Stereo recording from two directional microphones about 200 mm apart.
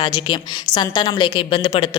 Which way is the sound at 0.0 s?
20° left (ahead or behind).